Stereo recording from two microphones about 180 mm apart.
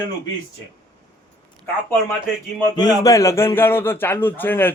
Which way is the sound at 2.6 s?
20° left (ahead or behind).